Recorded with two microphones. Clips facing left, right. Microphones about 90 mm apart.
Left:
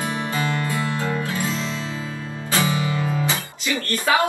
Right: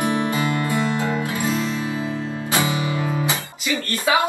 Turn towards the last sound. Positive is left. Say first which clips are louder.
# even
turn(degrees=-20)  # may be behind; listen again after turning